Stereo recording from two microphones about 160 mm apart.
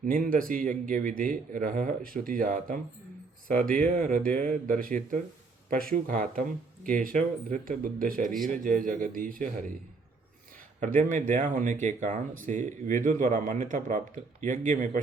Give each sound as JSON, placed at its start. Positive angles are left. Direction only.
{"t": 0.0, "sound": "a man's voice", "side_deg": -60}
{"t": 10.8, "sound": "speech", "side_deg": -55}